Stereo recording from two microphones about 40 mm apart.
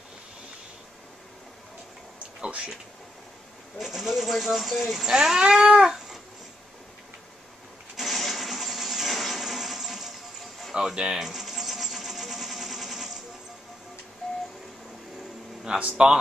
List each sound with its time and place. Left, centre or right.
2.4 s speech: right
3.7 s speech: centre
5.0 s cat: centre
7.9 s a sound: centre
10.7 s a sound: centre
14.2 s printer: centre
15.7 s speech: centre